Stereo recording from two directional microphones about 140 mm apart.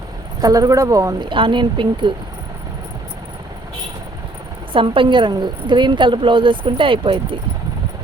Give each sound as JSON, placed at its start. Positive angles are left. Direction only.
{"t": 0.4, "sound": "speech", "side_deg": -25}
{"t": 1.3, "sound": "a woman's voice", "side_deg": -35}
{"t": 4.7, "sound": "a woman's voice", "side_deg": -40}